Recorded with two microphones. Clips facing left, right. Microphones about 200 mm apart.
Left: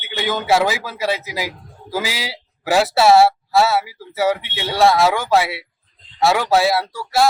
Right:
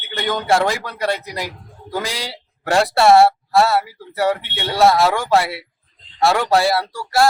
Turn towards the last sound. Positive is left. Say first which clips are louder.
# even
turn(degrees=0)  # may be behind; listen again after turning